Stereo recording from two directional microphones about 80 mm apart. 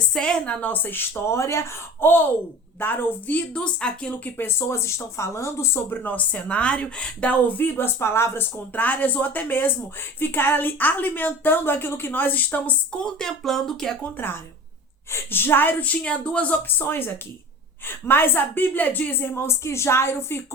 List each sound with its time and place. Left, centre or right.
0.1 s speech: centre
4.4 s speech: left
13.1 s speech: centre
14.0 s speech: left